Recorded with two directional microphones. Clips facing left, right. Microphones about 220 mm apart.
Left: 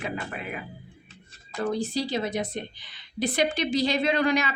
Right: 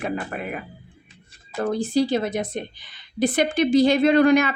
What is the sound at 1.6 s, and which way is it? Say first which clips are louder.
A woman's voice: right 6 dB; 50° right (ahead or behind).